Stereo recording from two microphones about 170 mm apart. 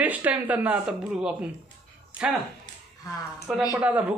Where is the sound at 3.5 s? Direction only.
5° right (ahead or behind).